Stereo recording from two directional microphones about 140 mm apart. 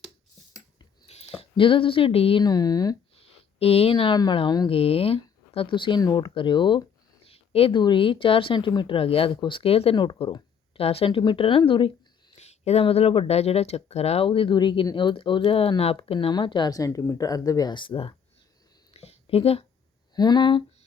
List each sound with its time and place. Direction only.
1.0 s a sound: 50° left (ahead or behind)
1.4 s speech: 40° left (ahead or behind)
2.4 s speech: 30° left (ahead or behind)
3.6 s speech: 45° left (ahead or behind)
4.7 s speech: 45° left (ahead or behind)
7.3 s speech: 45° left (ahead or behind)
12.4 s speech: 50° left (ahead or behind)
18.9 s a sound: 45° left (ahead or behind)
20.1 s speech: 30° left (ahead or behind)